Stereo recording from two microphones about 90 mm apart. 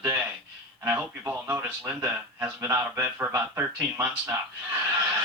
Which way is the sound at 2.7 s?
25° right (ahead or behind).